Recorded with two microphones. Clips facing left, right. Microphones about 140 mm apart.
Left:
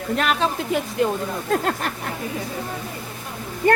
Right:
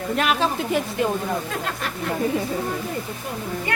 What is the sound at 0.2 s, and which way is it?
Speech, centre (ahead or behind).